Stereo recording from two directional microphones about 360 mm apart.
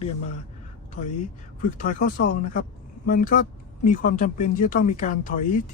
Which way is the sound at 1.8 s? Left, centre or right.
Left.